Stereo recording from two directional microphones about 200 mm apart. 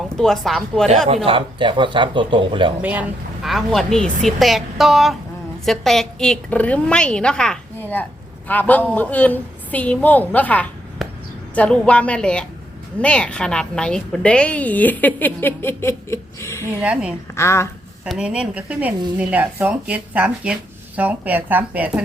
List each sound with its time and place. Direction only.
0.2 s a woman's voice: centre (ahead or behind)
1.0 s a man's voice: 30° right (ahead or behind)
2.8 s a woman's voice: 10° right (ahead or behind); by 16.6 s 15° left (ahead or behind)
16.8 s a woman's voice: 5° right (ahead or behind)
17.3 s a woman's voice: 15° left (ahead or behind)
18.0 s a woman's voice: 5° right (ahead or behind)